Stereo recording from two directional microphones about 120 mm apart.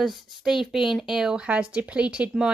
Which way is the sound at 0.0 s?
Centre (ahead or behind).